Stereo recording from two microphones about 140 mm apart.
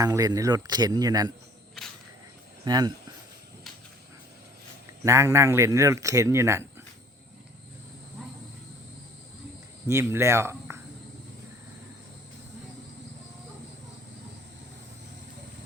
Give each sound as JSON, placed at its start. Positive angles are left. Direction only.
{"t": 0.0, "sound": "speech", "side_deg": -25}
{"t": 2.6, "sound": "speech", "side_deg": -30}
{"t": 5.0, "sound": "speech", "side_deg": -20}
{"t": 9.8, "sound": "speech", "side_deg": -20}